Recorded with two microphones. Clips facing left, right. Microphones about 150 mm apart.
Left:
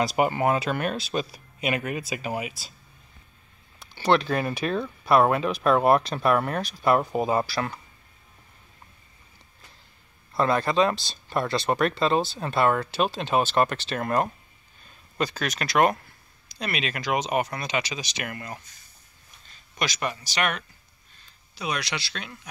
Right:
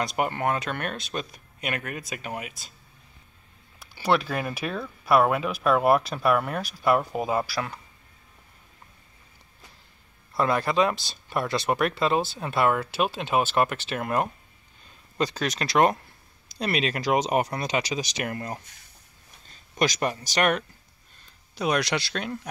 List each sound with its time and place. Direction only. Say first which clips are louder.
0.0 s speech: left 4 dB; 5° left (ahead or behind)
3.8 s speech: left 2 dB; 5° right (ahead or behind)
10.3 s speech: left 1 dB; 10° right (ahead or behind)
15.1 s speech: right 1 dB; 20° right (ahead or behind)
16.5 s speech: right 4 dB; 35° right (ahead or behind)
19.8 s speech: right 4 dB; 40° right (ahead or behind)